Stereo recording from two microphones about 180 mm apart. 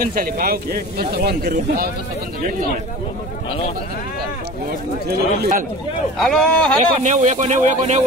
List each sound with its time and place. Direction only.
0.0 s speech: 55° right (ahead or behind)
4.6 s speech: 60° right (ahead or behind)
6.1 s speech: centre (ahead or behind)
7.0 s speech: 40° right (ahead or behind)